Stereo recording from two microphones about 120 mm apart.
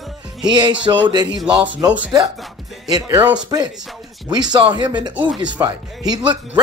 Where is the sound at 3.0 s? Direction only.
20° right (ahead or behind).